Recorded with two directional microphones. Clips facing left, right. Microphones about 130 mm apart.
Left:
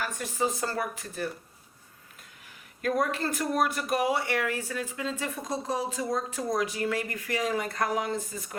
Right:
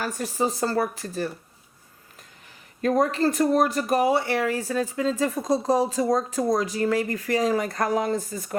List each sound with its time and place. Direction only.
0.0 s speech: 35° right (ahead or behind)
2.8 s speech: 30° right (ahead or behind)